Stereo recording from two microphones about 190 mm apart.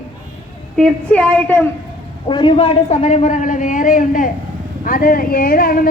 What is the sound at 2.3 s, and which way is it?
A man's voice, 25° left (ahead or behind).